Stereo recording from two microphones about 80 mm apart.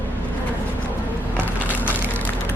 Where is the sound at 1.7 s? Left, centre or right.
Left.